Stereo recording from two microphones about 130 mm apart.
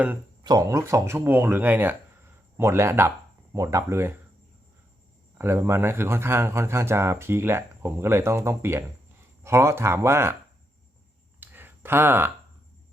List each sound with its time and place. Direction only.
0.4 s speech: 30° right (ahead or behind)
5.4 s speech: 20° right (ahead or behind)
11.3 s a sound: 15° right (ahead or behind)